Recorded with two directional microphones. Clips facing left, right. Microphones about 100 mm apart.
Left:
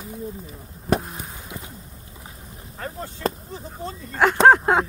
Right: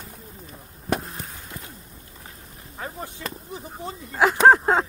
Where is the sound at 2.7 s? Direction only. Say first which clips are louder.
Left 1 dB; 10° right (ahead or behind).